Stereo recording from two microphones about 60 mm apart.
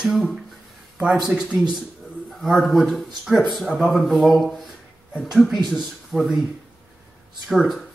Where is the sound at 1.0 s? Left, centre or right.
Centre.